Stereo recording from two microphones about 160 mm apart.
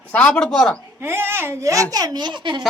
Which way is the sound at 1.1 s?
15° right (ahead or behind).